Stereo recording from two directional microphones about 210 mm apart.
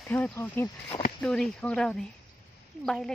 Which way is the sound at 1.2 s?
5° left (ahead or behind).